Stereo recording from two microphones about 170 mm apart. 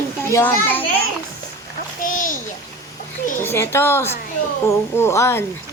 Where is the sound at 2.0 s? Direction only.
50° left (ahead or behind).